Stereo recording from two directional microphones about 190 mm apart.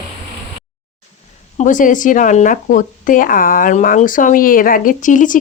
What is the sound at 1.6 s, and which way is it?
Speech, 45° left (ahead or behind).